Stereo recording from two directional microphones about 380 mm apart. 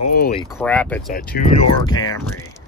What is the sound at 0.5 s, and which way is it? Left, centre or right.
Speech, centre.